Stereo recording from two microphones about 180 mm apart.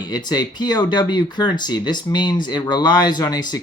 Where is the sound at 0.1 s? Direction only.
20° left (ahead or behind).